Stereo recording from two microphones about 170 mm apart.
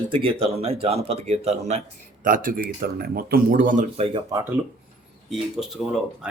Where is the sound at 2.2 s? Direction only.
55° right (ahead or behind).